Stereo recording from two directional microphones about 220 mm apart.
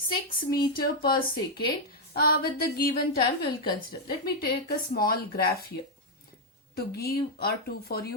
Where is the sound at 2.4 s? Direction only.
45° left (ahead or behind).